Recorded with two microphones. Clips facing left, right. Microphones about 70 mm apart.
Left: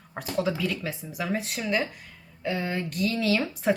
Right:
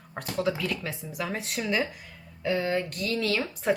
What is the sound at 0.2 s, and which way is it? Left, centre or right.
Speech, centre.